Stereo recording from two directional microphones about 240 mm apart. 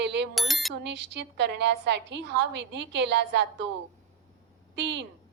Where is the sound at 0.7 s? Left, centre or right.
Right.